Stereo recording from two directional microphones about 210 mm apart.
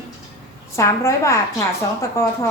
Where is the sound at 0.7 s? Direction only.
15° left (ahead or behind).